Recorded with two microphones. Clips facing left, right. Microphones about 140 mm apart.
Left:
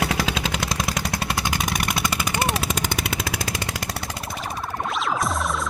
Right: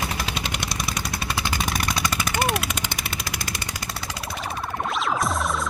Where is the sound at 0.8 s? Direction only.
90° left.